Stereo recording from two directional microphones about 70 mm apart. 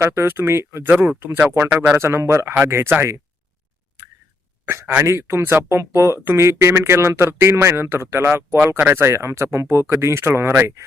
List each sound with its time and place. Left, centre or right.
0.0 s speech: right
0.9 s speech: right
4.7 s speech: right